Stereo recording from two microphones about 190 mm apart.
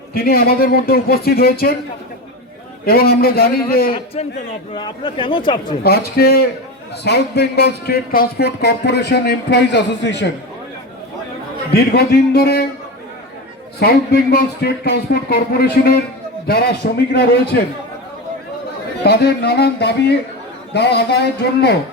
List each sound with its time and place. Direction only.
0.1 s speech: 55° left (ahead or behind)
2.8 s speech: 55° left (ahead or behind)
3.9 s a man's voice: 30° left (ahead or behind)
5.8 s speech: 55° left (ahead or behind)
11.7 s speech: 55° left (ahead or behind)
13.7 s speech: 60° left (ahead or behind)
19.0 s speech: 60° left (ahead or behind)